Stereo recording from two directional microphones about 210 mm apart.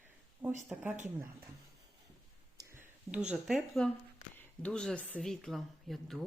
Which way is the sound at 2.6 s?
10° right (ahead or behind).